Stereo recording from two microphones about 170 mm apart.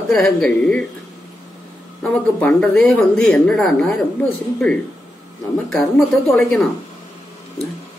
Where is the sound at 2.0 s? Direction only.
5° left (ahead or behind).